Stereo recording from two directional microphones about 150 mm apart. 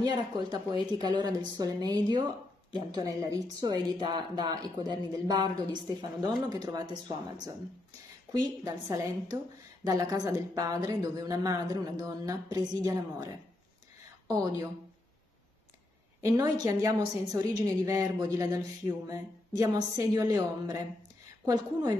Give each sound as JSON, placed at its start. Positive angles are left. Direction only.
{"t": 0.0, "sound": "speech", "side_deg": -30}
{"t": 8.3, "sound": "a woman's voice", "side_deg": -25}
{"t": 16.2, "sound": "speech", "side_deg": -25}